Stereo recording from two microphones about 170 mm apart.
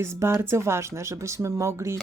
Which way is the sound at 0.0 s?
15° right (ahead or behind).